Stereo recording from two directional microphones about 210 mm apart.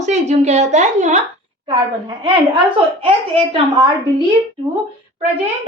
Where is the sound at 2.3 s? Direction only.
25° right (ahead or behind).